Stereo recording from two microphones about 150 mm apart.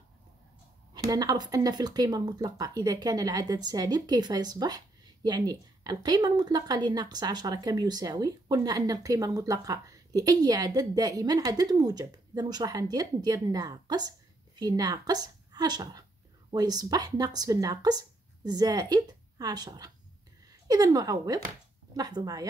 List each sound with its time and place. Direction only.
0.9 s speech: 25° right (ahead or behind)